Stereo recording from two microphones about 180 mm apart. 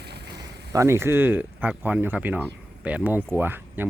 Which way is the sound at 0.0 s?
65° right (ahead or behind).